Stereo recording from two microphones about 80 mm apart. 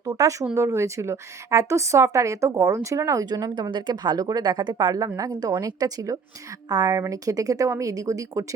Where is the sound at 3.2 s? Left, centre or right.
Right.